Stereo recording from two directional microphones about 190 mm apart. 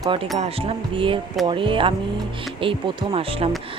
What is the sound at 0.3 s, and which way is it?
Speech, 30° right (ahead or behind).